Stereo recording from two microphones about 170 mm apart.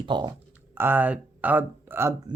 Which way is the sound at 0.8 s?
10° right (ahead or behind).